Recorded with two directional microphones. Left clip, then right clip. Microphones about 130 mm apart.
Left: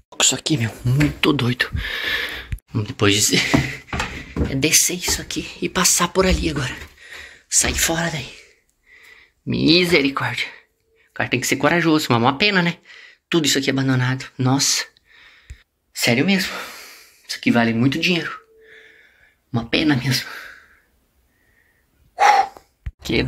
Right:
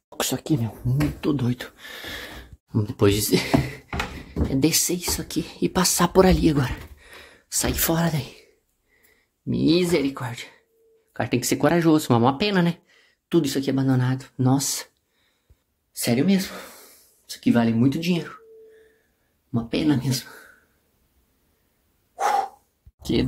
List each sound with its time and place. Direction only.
0.1 s a sound: 50° right (ahead or behind)
0.6 s speech: centre (ahead or behind)
1.6 s speech: 15° right (ahead or behind)
2.8 s speech: 55° right (ahead or behind); by 7.7 s 90° right
7.8 s speech: 75° right (ahead or behind)
9.5 s speech: 15° right (ahead or behind)
10.1 s speech: 5° right (ahead or behind)
11.1 s speech: 45° right (ahead or behind)
12.1 s speech: 35° right (ahead or behind)
15.9 s speech: 10° right (ahead or behind)
16.3 s speech: 20° right (ahead or behind)
19.5 s speech: 25° right (ahead or behind)
23.2 s speech: 20° right (ahead or behind)